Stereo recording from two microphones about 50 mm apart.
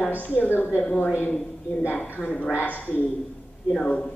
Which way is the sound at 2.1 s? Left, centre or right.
Left.